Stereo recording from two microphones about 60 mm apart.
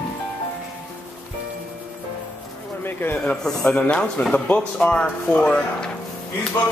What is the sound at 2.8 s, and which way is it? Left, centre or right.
Speech, left.